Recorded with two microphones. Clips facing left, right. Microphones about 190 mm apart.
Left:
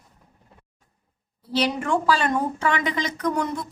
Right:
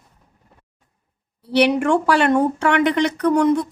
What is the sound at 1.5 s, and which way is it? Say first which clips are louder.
A woman's voice: right 7 dB; 70° right (ahead or behind).